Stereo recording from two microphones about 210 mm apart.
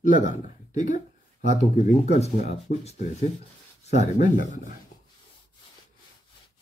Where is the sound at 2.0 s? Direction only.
30° left (ahead or behind).